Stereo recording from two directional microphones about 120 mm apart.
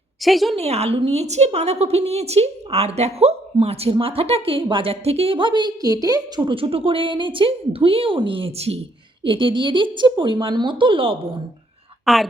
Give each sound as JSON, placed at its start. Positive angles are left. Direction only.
{"t": 0.2, "sound": "a woman's voice", "side_deg": 0}
{"t": 0.5, "sound": "a woman's voice", "side_deg": -60}
{"t": 9.2, "sound": "a woman's voice", "side_deg": -45}
{"t": 12.0, "sound": "a woman's voice", "side_deg": 0}